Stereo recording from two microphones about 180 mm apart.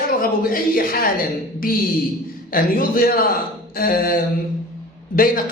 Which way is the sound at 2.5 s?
50° left (ahead or behind).